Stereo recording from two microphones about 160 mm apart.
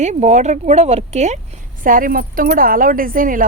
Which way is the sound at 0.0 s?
50° right (ahead or behind).